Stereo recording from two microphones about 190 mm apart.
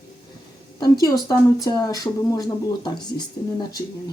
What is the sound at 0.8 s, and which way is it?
Speech, 20° left (ahead or behind).